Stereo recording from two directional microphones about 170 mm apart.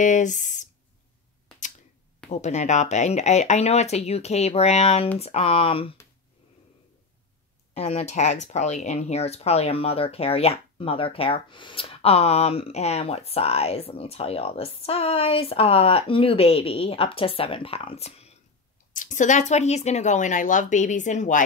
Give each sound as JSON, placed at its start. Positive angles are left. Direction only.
{"t": 0.0, "sound": "speech", "side_deg": 45}
{"t": 2.3, "sound": "speech", "side_deg": 40}
{"t": 7.7, "sound": "speech", "side_deg": 40}
{"t": 18.9, "sound": "speech", "side_deg": 50}